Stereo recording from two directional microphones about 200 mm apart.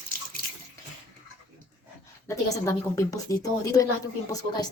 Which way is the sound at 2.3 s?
15° left (ahead or behind).